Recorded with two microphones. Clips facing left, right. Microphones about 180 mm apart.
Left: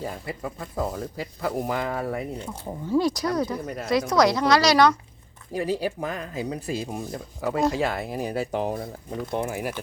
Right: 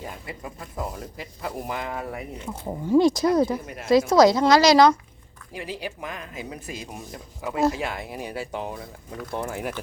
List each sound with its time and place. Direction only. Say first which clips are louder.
0.0 s speech: left 4 dB; 35° left (ahead or behind)
2.5 s speech: right 5 dB; 15° right (ahead or behind)
5.5 s speech: left 7 dB; 40° left (ahead or behind)
8.8 s speech: left 5 dB; 20° left (ahead or behind)
9.6 s speech: left 1 dB; 10° left (ahead or behind)